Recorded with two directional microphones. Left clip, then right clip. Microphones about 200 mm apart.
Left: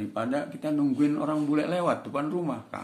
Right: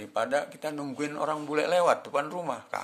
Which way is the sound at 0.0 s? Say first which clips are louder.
Right 2 dB; 45° right (ahead or behind).